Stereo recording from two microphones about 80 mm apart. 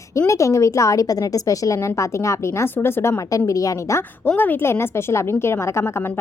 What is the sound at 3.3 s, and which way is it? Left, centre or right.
Speech, left.